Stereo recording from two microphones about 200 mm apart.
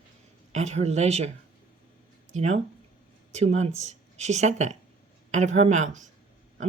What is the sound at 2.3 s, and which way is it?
Speech, 35° right (ahead or behind).